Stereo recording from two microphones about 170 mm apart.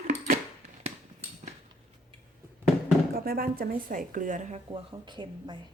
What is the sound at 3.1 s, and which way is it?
Speech, 60° right (ahead or behind).